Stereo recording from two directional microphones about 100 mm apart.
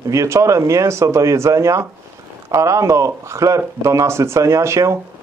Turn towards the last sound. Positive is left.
turn(degrees=-30)  # may be behind; listen again after turning